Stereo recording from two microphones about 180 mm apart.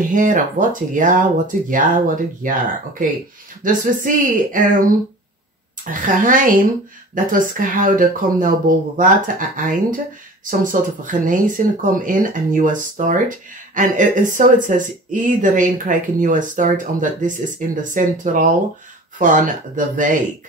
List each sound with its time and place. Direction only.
0.1 s speech: 45° right (ahead or behind)
5.9 s speech: 50° right (ahead or behind)